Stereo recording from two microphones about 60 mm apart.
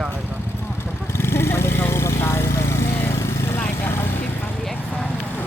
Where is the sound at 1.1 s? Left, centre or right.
Left.